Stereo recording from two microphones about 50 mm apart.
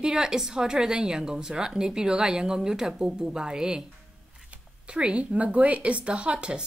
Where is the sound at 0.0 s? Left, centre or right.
Centre.